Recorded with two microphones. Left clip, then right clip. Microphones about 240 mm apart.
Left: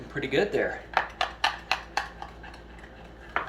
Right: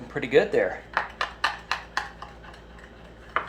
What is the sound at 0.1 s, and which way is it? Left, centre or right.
Speech, centre.